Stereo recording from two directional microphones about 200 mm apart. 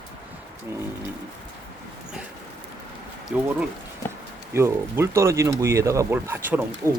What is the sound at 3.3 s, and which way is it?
Speech, 5° right (ahead or behind).